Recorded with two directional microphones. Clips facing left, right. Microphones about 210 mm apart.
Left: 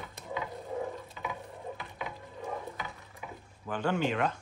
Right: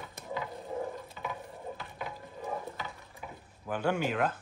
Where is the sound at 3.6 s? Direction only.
10° right (ahead or behind).